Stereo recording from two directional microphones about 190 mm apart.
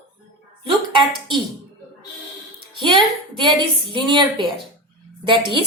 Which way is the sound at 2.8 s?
25° right (ahead or behind).